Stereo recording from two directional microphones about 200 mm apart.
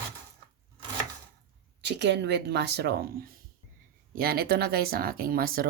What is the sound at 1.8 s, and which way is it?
Speech, 60° right (ahead or behind).